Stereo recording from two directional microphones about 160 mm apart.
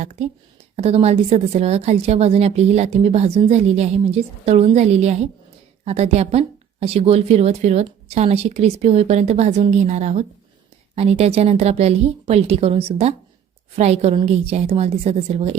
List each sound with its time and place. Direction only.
0.0 s speech: 45° right (ahead or behind)